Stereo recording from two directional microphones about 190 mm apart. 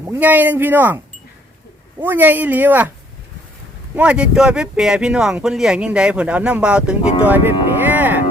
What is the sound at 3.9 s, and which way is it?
Speech, 5° right (ahead or behind).